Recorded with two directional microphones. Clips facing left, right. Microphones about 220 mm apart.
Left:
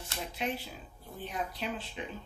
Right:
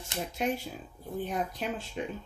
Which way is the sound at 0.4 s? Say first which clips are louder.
Right 5 dB; 45° right (ahead or behind).